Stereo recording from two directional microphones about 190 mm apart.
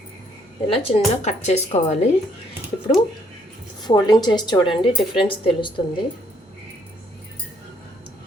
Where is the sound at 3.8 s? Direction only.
20° left (ahead or behind).